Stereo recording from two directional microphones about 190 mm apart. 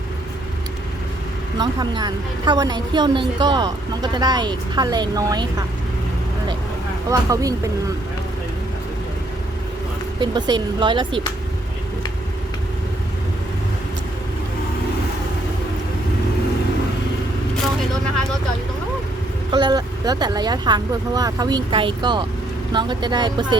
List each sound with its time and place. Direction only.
1.5 s a woman's voice: 20° right (ahead or behind)
7.1 s speech: 15° right (ahead or behind)
10.2 s a woman's voice: 25° right (ahead or behind)
19.5 s a woman's voice: 25° right (ahead or behind)